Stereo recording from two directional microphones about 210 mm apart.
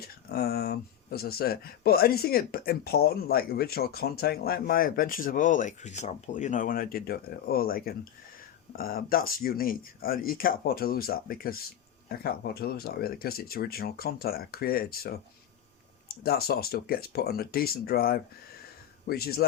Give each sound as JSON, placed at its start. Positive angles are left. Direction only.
{"t": 0.0, "sound": "speech", "side_deg": 50}
{"t": 16.2, "sound": "speech", "side_deg": 45}